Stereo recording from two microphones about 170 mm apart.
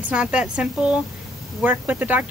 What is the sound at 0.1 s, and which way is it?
Speech, 5° right (ahead or behind).